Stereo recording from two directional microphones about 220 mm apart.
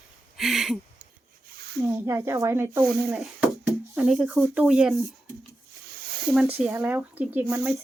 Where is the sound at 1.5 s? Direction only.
45° right (ahead or behind).